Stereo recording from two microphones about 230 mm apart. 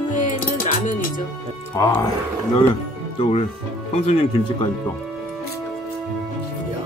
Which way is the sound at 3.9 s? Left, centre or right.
Left.